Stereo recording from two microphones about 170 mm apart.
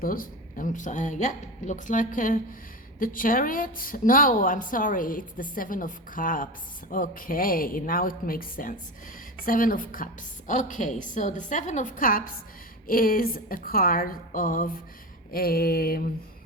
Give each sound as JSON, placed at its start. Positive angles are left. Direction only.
{"t": 0.0, "sound": "a woman's voice", "side_deg": 55}